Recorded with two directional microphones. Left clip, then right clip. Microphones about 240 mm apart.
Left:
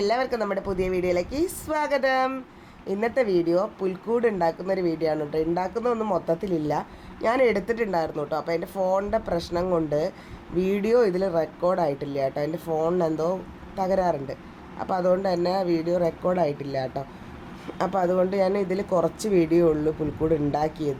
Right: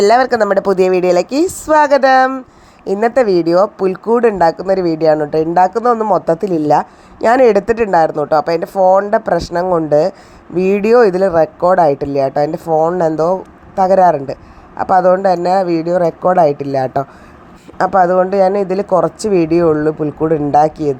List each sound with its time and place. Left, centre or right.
0.0 s speech: right